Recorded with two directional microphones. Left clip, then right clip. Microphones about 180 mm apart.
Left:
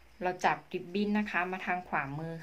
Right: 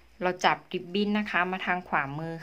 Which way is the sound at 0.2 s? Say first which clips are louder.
Right 5 dB; 30° right (ahead or behind).